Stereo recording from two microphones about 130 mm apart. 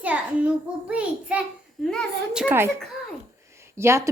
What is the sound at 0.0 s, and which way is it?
A child's voice, 10° right (ahead or behind).